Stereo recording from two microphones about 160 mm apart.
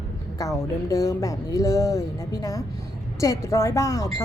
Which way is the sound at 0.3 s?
20° left (ahead or behind).